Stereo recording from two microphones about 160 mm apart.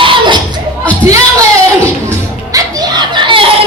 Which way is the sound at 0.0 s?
30° right (ahead or behind).